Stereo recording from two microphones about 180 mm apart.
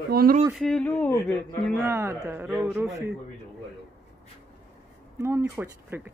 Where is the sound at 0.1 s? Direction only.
55° right (ahead or behind).